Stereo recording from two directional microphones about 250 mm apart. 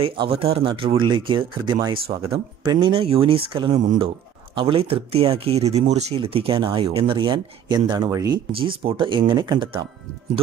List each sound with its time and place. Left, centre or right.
0.0 s speech: right